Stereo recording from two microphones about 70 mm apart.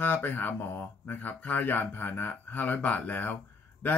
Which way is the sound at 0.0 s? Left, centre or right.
Left.